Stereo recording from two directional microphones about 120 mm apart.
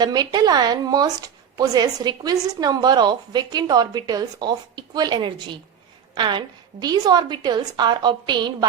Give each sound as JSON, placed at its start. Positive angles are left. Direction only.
{"t": 0.0, "sound": "a woman's voice", "side_deg": -35}